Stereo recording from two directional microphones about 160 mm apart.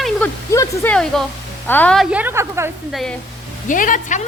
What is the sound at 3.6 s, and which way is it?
Speech, 55° left (ahead or behind).